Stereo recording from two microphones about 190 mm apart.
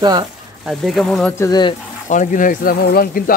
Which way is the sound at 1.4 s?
20° left (ahead or behind).